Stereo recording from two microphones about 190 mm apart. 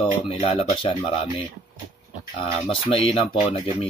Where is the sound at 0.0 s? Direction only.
30° left (ahead or behind).